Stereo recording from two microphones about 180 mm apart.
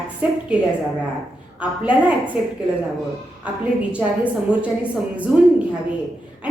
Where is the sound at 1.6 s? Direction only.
5° right (ahead or behind).